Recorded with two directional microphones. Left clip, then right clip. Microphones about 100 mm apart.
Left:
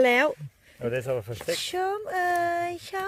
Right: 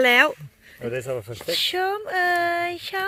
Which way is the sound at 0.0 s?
10° left (ahead or behind).